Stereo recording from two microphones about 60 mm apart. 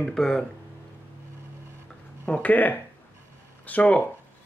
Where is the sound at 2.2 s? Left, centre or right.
Left.